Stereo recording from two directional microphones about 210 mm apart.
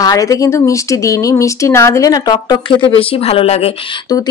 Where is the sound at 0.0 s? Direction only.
15° left (ahead or behind).